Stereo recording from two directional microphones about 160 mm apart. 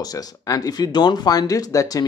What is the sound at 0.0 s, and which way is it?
Speech, 25° left (ahead or behind).